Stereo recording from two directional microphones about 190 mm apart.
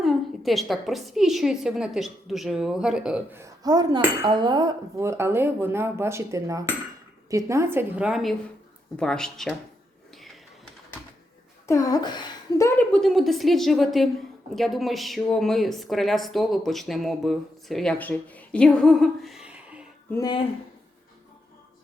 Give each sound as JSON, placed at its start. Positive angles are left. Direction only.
{"t": 0.0, "sound": "speech", "side_deg": 0}
{"t": 3.4, "sound": "dishes", "side_deg": -20}
{"t": 9.0, "sound": "speech", "side_deg": 5}
{"t": 11.6, "sound": "a woman's voice", "side_deg": 15}
{"t": 20.1, "sound": "speech", "side_deg": 20}